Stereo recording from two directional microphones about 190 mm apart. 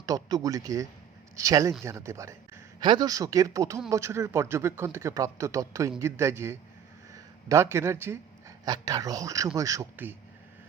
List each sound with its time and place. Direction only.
0.0 s a man's voice: 20° right (ahead or behind)